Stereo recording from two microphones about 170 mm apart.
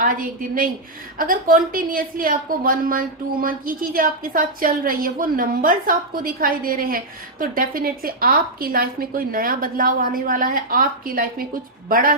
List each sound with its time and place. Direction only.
0.0 s a woman's voice: 55° right (ahead or behind)